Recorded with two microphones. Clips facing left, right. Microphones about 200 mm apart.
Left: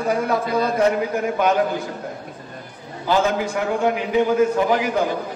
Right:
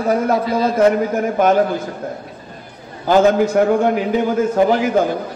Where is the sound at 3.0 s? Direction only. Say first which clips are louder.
Right 7 dB; 50° right (ahead or behind).